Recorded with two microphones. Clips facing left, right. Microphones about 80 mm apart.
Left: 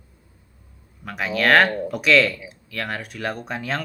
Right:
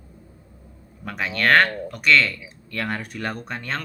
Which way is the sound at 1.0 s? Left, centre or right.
Centre.